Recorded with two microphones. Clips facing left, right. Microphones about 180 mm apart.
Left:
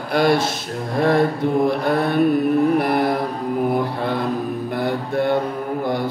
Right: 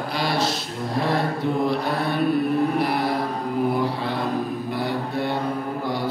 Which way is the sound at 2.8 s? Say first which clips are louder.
Left 4 dB; 55° left (ahead or behind).